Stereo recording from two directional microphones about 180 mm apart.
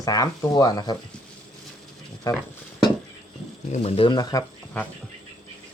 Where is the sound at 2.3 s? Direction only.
20° left (ahead or behind).